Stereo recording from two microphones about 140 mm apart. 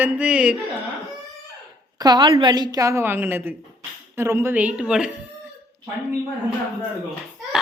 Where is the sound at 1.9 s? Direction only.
30° right (ahead or behind); by 3.6 s 15° right (ahead or behind).